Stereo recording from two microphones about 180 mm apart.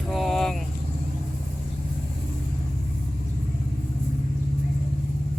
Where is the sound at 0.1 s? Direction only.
Centre (ahead or behind).